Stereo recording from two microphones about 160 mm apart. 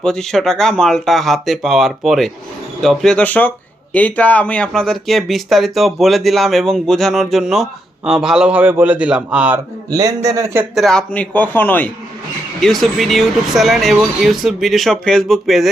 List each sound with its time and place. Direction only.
0.0 s speech: 5° left (ahead or behind)
9.9 s a man's voice: 25° right (ahead or behind)
10.8 s a man's voice: 5° left (ahead or behind)